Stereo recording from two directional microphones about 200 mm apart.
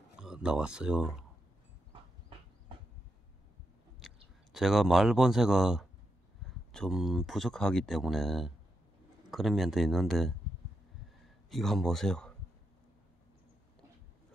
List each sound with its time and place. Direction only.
0.1 s speech: 5° right (ahead or behind)
4.0 s clicking: centre (ahead or behind)
4.5 s speech: centre (ahead or behind)
11.5 s speech: centre (ahead or behind)